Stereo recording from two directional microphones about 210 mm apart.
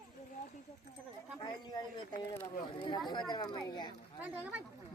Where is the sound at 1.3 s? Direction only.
20° left (ahead or behind).